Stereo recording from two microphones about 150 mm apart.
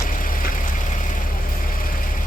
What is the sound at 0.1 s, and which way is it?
Vehicle, 65° left (ahead or behind).